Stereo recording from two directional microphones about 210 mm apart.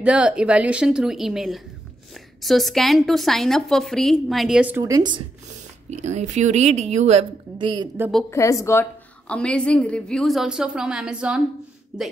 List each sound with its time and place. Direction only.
0.0 s a woman's voice: 5° right (ahead or behind)
5.9 s a woman's voice: 35° right (ahead or behind)
8.3 s a woman's voice: 15° left (ahead or behind); by 12.1 s 5° right (ahead or behind)